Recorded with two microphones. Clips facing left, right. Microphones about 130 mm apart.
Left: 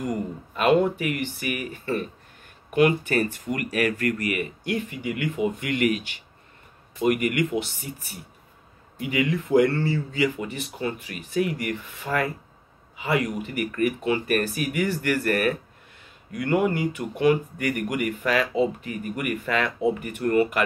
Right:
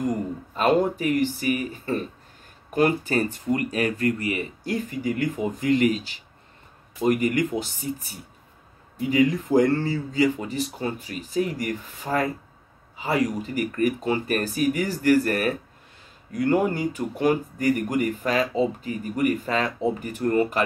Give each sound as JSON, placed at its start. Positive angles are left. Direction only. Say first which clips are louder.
{"t": 0.6, "sound": "speech", "louder": "left 1 dB", "side_deg": -35}
{"t": 12.9, "sound": "a sound", "louder": "even", "side_deg": -30}
{"t": 13.4, "sound": "speech", "louder": "right 1 dB", "side_deg": -35}